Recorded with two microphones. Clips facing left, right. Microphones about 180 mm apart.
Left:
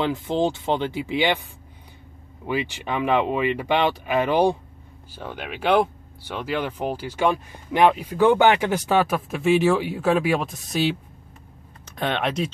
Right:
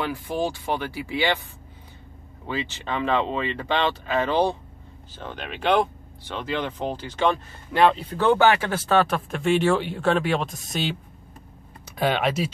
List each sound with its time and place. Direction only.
0.0 s speech: 20° left (ahead or behind)
2.4 s speech: 15° left (ahead or behind); by 12.5 s 5° right (ahead or behind)